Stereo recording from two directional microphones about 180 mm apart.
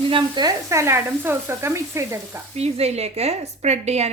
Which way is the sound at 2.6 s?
35° right (ahead or behind).